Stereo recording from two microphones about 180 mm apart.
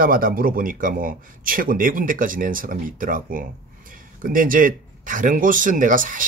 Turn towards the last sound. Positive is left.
turn(degrees=-50)  # may be behind; listen again after turning